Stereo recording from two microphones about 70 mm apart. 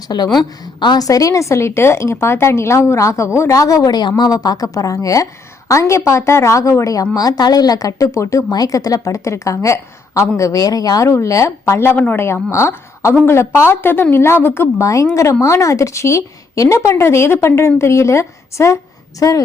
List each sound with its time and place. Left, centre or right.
0.1 s a woman's voice: left
0.6 s speech: left
3.8 s a woman's voice: left
4.2 s speech: left
7.2 s speech: left
8.4 s speech: left
11.1 s speech: left
11.9 s speech: left
12.2 s speech: left
14.8 s speech: left
19.2 s speech: left